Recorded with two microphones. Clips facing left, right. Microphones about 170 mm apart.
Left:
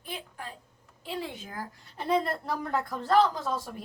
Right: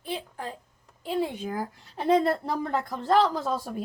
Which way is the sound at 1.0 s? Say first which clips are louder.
Right 8 dB; 45° right (ahead or behind).